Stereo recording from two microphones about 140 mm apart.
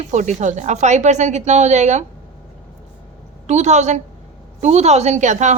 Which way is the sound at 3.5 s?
55° right (ahead or behind).